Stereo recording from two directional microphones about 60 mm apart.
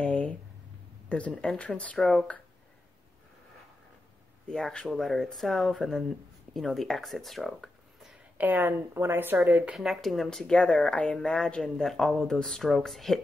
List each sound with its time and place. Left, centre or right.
0.0 s a sound: left
1.0 s speech: centre
4.5 s speech: centre
8.4 s speech: right
9.8 s speech: centre